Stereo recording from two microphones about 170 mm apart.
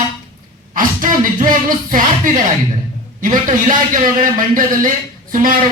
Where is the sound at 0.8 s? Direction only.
50° right (ahead or behind).